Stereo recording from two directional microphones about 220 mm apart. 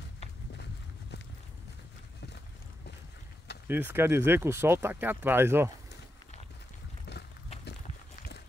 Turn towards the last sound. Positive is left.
turn(degrees=50)  # may be behind; listen again after turning